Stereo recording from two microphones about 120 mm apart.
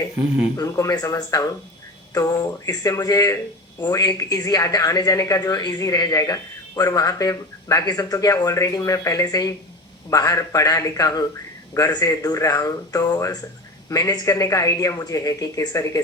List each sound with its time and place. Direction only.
0.5 s a woman's voice: 30° left (ahead or behind)